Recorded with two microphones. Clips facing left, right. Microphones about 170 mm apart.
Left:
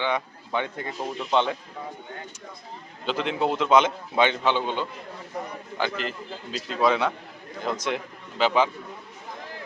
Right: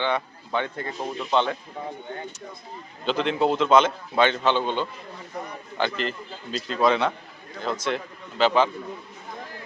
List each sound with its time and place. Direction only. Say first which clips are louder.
0.0 s a man's voice: right 1 dB; 15° left (ahead or behind)
0.9 s speech: even; centre (ahead or behind)
3.1 s a man's voice: right 3 dB; 5° left (ahead or behind)